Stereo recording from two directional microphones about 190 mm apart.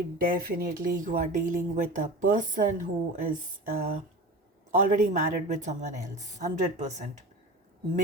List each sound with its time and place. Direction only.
0.2 s speech: 50° right (ahead or behind)
4.8 s speech: 40° right (ahead or behind)